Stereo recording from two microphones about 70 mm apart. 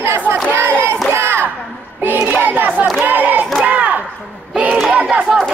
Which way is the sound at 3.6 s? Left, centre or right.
Right.